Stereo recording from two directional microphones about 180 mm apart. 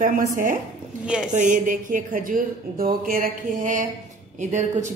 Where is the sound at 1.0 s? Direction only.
5° right (ahead or behind).